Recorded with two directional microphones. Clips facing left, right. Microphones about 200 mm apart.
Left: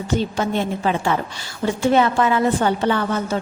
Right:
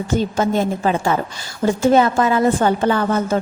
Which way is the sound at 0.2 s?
45° right (ahead or behind).